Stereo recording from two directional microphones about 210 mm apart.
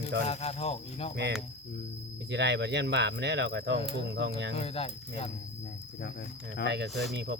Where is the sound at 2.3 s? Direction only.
55° right (ahead or behind).